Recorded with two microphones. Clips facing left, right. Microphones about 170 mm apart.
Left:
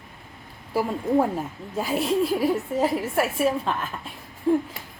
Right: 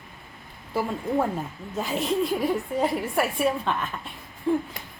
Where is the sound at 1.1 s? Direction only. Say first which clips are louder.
Left 5 dB; 10° left (ahead or behind).